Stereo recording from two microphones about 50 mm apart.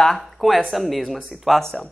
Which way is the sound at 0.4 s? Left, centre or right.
Centre.